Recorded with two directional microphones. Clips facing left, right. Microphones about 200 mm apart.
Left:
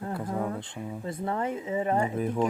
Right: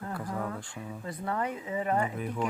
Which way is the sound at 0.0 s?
25° left (ahead or behind).